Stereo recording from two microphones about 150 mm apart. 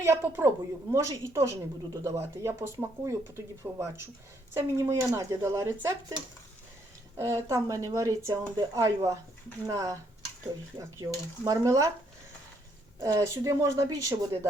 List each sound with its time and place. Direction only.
0.0 s a woman's voice: 15° right (ahead or behind)
7.2 s a woman's voice: 20° right (ahead or behind)
11.0 s a woman's voice: 20° right (ahead or behind)
13.0 s a woman's voice: 20° right (ahead or behind)